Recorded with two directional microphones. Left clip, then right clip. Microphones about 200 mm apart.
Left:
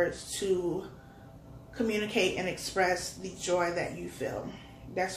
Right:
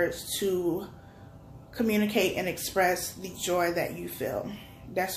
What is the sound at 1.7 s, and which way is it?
Speech, 45° right (ahead or behind).